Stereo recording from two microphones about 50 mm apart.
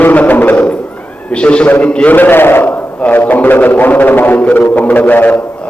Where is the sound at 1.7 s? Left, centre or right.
Left.